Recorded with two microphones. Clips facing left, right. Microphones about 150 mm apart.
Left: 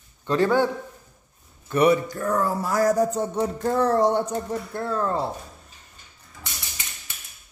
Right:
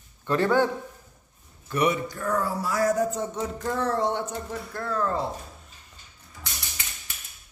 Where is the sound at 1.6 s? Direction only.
30° left (ahead or behind).